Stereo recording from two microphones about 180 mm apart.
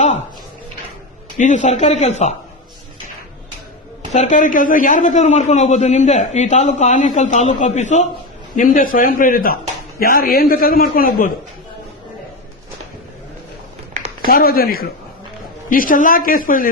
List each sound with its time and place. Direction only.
1.4 s a man's voice: 45° left (ahead or behind)
4.1 s a man's voice: 40° left (ahead or behind)
14.3 s a man's voice: 55° left (ahead or behind)